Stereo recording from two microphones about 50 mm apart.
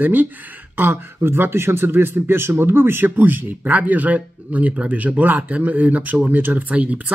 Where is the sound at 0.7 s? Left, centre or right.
Right.